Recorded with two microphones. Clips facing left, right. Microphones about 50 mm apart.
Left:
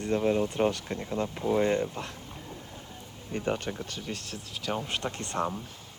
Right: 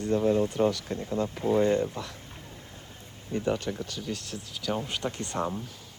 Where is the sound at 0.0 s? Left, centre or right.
Left.